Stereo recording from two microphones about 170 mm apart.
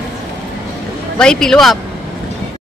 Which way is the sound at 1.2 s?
5° left (ahead or behind).